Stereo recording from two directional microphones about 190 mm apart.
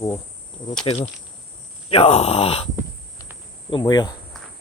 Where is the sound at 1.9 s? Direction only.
30° left (ahead or behind).